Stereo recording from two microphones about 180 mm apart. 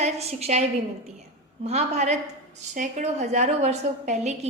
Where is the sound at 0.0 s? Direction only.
35° right (ahead or behind).